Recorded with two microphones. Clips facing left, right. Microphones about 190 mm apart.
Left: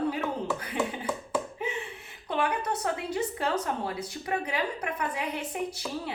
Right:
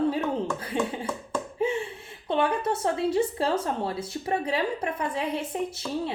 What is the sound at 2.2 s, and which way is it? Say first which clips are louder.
A woman's voice: right 4 dB; 25° right (ahead or behind).